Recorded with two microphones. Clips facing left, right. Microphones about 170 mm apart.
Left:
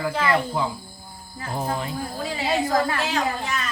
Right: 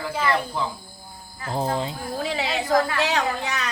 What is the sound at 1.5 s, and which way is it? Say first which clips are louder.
Speech: right 2 dB; 30° right (ahead or behind).